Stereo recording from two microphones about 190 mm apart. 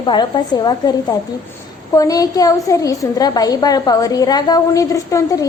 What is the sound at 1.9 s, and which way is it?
A woman's voice, 20° left (ahead or behind).